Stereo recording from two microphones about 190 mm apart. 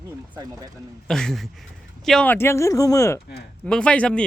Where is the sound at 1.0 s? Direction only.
5° left (ahead or behind).